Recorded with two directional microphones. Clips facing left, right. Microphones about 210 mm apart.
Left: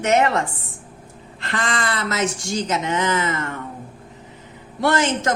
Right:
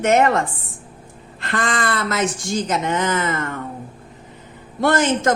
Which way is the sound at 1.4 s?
55° right (ahead or behind).